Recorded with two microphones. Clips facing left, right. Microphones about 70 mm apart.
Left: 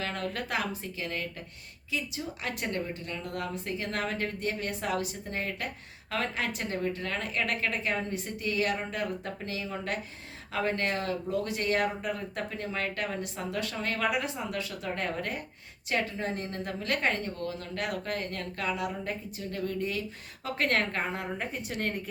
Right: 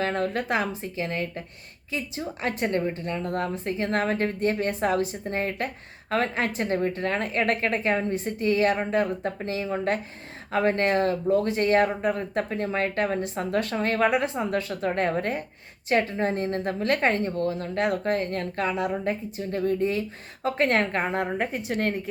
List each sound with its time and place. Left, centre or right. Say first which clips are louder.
0.0 s a woman's voice: right 8 dB; right
21.1 s speech: right 8 dB; right